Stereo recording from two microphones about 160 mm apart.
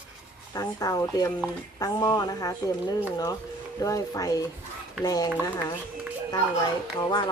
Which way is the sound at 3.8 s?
20° left (ahead or behind).